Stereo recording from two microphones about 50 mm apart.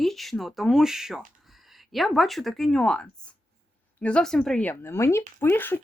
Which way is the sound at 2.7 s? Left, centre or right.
Centre.